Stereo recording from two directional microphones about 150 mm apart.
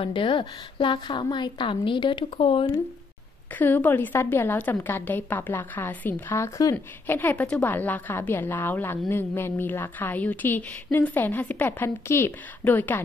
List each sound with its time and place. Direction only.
0.0 s a woman's voice: 35° left (ahead or behind)
3.5 s a woman's voice: 10° left (ahead or behind)